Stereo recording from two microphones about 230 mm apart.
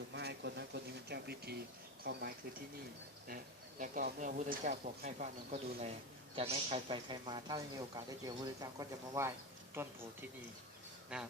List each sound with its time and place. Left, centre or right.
0.1 s a sound: right
2.0 s speech: right
3.2 s speech: right; by 9.9 s centre
11.1 s speech: centre